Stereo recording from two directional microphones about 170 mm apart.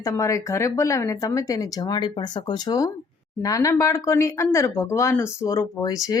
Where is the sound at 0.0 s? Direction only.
20° left (ahead or behind).